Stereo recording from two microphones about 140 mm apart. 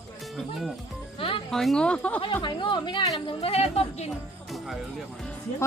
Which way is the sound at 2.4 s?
35° left (ahead or behind).